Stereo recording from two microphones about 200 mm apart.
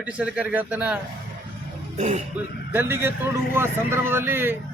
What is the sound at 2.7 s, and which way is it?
Speech, 10° right (ahead or behind).